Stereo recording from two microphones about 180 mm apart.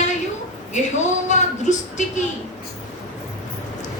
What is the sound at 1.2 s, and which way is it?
Speech, 40° left (ahead or behind).